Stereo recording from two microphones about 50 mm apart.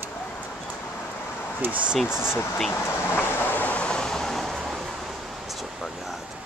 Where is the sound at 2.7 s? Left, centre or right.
Left.